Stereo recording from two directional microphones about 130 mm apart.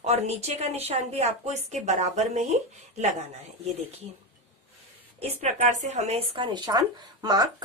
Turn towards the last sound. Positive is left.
turn(degrees=-30)  # may be behind; listen again after turning